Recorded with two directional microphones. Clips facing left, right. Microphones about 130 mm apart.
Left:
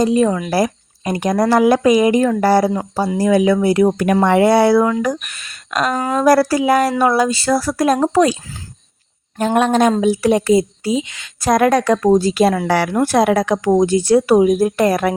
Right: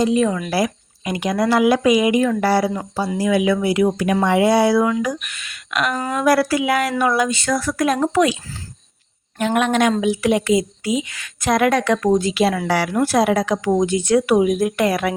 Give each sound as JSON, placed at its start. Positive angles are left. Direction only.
{"t": 0.0, "sound": "speech", "side_deg": 35}
{"t": 5.2, "sound": "speech", "side_deg": 35}
{"t": 9.4, "sound": "speech", "side_deg": 35}
{"t": 11.3, "sound": "speech", "side_deg": 40}
{"t": 13.7, "sound": "speech", "side_deg": 35}